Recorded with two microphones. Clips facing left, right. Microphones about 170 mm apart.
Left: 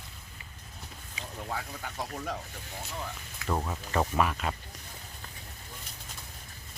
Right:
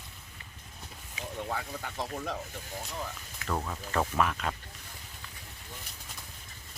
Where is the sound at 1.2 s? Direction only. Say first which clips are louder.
Right 2 dB; centre (ahead or behind).